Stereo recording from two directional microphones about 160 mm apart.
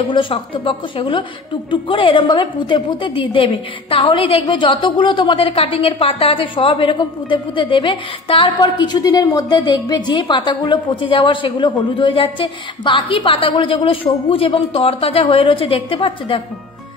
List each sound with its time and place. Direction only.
0.0 s a woman's voice: 35° left (ahead or behind)